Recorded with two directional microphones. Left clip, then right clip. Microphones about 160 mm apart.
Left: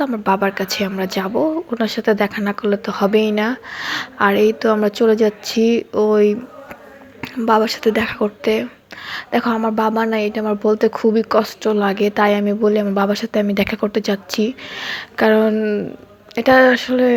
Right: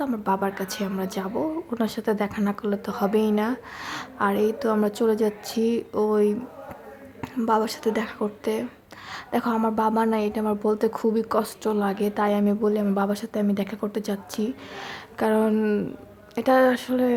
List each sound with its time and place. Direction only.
0.0 s speech: 15° left (ahead or behind)
7.4 s speech: 10° left (ahead or behind)
15.5 s speech: 5° right (ahead or behind)
16.3 s speech: 15° left (ahead or behind)